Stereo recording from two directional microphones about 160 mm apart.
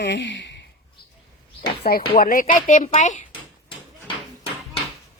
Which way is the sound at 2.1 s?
60° left (ahead or behind).